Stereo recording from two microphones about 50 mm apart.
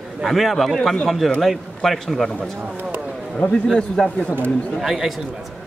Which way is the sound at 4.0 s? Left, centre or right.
Centre.